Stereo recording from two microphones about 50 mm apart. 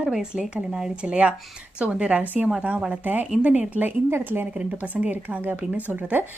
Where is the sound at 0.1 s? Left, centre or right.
Centre; by 3.2 s right.